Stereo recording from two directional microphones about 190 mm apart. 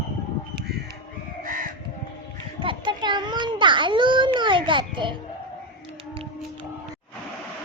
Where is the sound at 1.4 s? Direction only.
45° right (ahead or behind).